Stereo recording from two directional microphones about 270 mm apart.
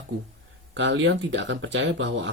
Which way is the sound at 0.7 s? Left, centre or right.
Right.